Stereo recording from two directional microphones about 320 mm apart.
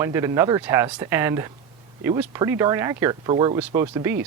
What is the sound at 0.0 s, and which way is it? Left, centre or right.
Speech, centre.